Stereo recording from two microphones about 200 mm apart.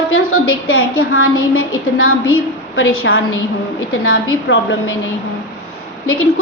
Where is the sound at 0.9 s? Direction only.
90° left.